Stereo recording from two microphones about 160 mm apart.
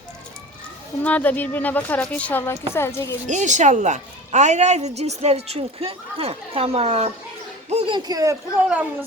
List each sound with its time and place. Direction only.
1.0 s a woman's voice: 10° left (ahead or behind)
3.2 s a woman's voice: 50° right (ahead or behind); by 8.4 s 20° right (ahead or behind)
8.6 s speech: 10° right (ahead or behind)